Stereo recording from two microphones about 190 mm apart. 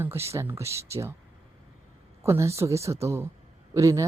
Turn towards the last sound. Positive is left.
turn(degrees=-15)  # may be behind; listen again after turning